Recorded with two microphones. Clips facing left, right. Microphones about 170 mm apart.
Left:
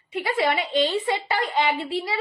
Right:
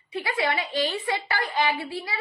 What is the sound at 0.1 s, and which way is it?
A woman's voice, 20° left (ahead or behind).